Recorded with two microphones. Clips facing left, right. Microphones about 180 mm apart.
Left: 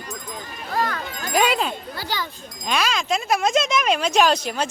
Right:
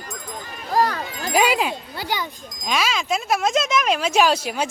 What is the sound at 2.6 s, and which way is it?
A woman's voice, 5° right (ahead or behind).